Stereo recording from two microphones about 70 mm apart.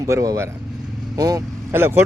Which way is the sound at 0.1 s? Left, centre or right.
Right.